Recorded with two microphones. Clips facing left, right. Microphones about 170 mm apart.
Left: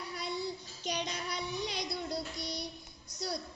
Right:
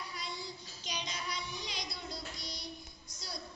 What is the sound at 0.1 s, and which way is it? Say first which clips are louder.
Child singing: left 7 dB; 60° left (ahead or behind).